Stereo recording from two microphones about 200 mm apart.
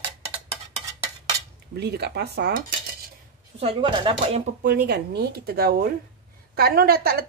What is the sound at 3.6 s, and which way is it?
Speech, 25° right (ahead or behind).